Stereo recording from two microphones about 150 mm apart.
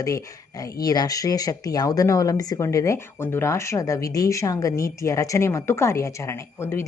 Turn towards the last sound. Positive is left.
turn(degrees=15)  # may be behind; listen again after turning